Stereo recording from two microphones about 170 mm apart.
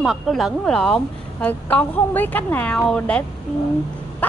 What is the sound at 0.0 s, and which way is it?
A woman's voice, centre (ahead or behind).